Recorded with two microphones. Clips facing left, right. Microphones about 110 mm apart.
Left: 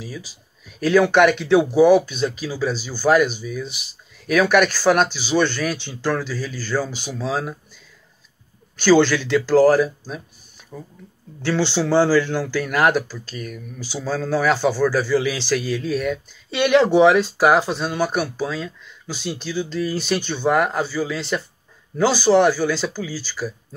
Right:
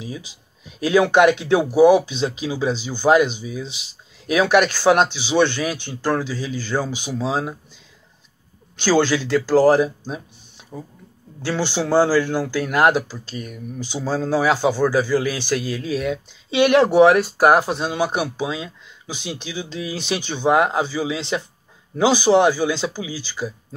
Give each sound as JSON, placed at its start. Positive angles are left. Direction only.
{"t": 0.8, "sound": "speech", "side_deg": -15}
{"t": 8.8, "sound": "speech", "side_deg": -10}
{"t": 11.4, "sound": "speech", "side_deg": -10}
{"t": 13.3, "sound": "speech", "side_deg": -30}
{"t": 13.8, "sound": "speech", "side_deg": -15}